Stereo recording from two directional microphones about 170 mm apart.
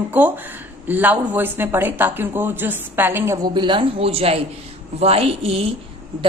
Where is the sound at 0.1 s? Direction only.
10° right (ahead or behind).